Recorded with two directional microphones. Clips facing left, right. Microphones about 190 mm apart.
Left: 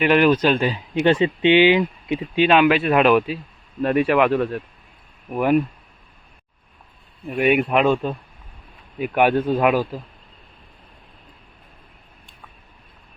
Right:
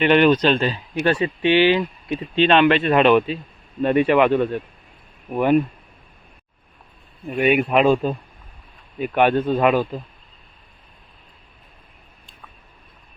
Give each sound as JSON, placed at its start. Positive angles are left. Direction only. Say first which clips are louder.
{"t": 0.0, "sound": "speech", "louder": "right 1 dB", "side_deg": 5}
{"t": 7.3, "sound": "speech", "louder": "even", "side_deg": 0}
{"t": 9.0, "sound": "speech", "louder": "even", "side_deg": 10}